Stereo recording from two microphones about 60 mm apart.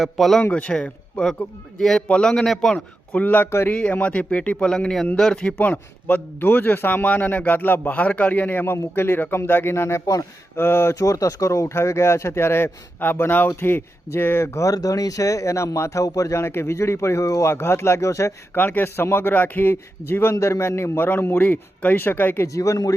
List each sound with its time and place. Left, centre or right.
0.0 s a man's voice: centre
0.5 s speech: centre
2.7 s a man's voice: left
3.7 s a man's voice: centre; by 10.9 s left
10.9 s a man's voice: left
14.7 s speech: left
16.4 s speech: left
18.5 s a man's voice: left
20.3 s a man's voice: left
22.5 s speech: left